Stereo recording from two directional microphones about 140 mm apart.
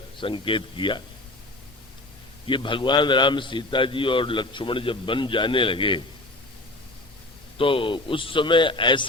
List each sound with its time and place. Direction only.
0.2 s a man's voice: 35° left (ahead or behind)
2.5 s a man's voice: 35° left (ahead or behind)
7.6 s a man's voice: 40° left (ahead or behind)